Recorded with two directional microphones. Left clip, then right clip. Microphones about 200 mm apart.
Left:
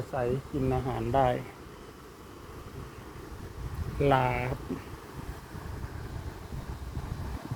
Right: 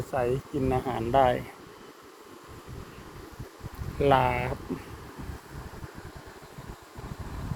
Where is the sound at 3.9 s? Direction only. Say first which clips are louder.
Right 3 dB; 10° right (ahead or behind).